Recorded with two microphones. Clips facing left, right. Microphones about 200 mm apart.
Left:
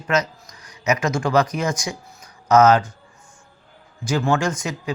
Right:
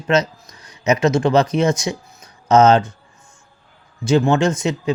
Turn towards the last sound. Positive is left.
turn(degrees=-25)  # may be behind; listen again after turning